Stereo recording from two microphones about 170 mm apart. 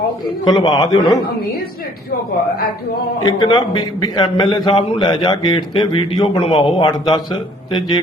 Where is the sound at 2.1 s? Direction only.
65° left (ahead or behind).